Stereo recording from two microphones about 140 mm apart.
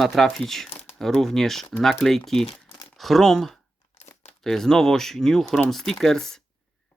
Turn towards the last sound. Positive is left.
turn(degrees=5)  # may be behind; listen again after turning